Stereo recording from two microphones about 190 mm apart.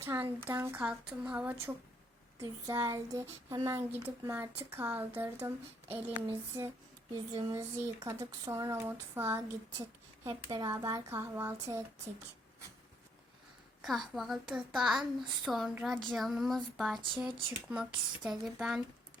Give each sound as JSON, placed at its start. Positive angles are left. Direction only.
{"t": 0.0, "sound": "speech", "side_deg": -10}
{"t": 13.8, "sound": "a child's voice", "side_deg": 0}
{"t": 17.0, "sound": "speech", "side_deg": -25}
{"t": 17.7, "sound": "a child's voice", "side_deg": -5}